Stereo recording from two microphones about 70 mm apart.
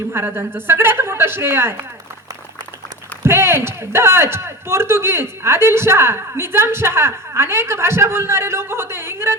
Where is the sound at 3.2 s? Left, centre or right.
Right.